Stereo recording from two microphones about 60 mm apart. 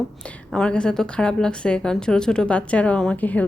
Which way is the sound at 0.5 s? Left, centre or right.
Centre.